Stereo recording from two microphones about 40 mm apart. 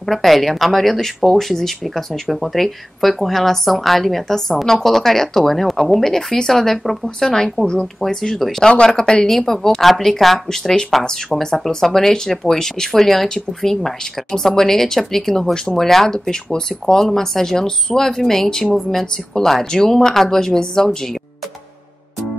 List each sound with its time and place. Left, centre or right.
0.1 s a woman's voice: centre